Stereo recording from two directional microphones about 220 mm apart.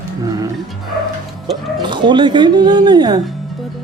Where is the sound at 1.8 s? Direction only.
20° right (ahead or behind).